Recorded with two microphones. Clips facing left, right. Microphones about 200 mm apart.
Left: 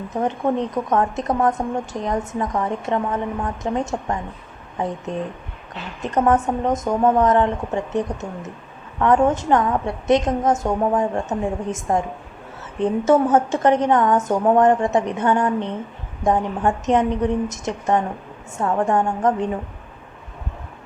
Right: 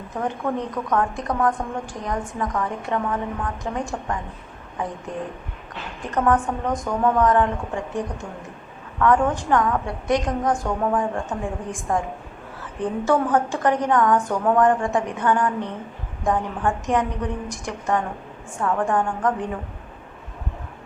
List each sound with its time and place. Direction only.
0.1 s a woman's voice: 25° left (ahead or behind)
6.0 s a woman's voice: 25° left (ahead or behind)